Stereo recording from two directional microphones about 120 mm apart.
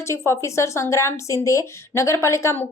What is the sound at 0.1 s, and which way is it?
Speech, 25° left (ahead or behind).